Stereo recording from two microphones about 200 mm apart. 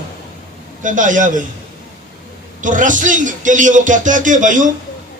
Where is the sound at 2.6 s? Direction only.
40° right (ahead or behind).